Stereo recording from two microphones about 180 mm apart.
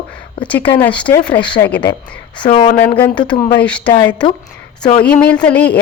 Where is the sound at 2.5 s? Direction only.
30° left (ahead or behind).